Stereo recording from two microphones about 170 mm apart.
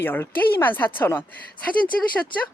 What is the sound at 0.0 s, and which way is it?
Speech, 10° left (ahead or behind).